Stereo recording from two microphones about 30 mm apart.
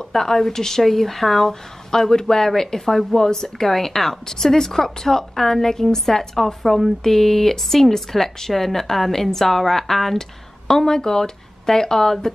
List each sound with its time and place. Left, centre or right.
0.1 s speech: centre